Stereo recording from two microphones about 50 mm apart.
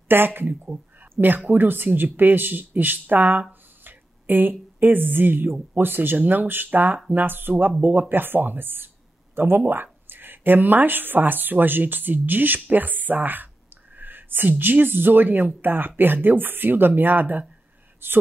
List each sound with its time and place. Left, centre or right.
0.1 s speech: right
13.9 s whispering: right
14.6 s speech: right